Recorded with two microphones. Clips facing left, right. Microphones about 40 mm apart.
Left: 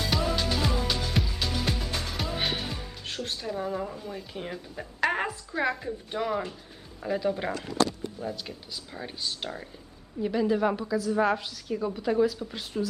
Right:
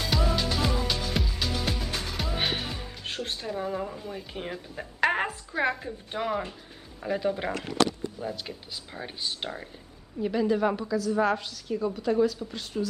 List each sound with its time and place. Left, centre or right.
0.1 s music: centre
3.5 s a woman's voice: centre
7.5 s speech: right
8.2 s speech: centre
10.2 s a woman's voice: centre